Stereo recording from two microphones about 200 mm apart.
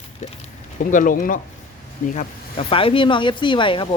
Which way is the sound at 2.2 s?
30° left (ahead or behind).